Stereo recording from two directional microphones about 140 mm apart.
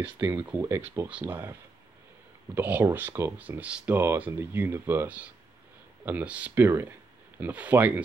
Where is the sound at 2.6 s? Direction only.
10° right (ahead or behind).